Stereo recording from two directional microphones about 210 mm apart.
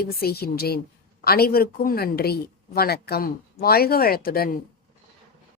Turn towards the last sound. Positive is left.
turn(degrees=45)  # may be behind; listen again after turning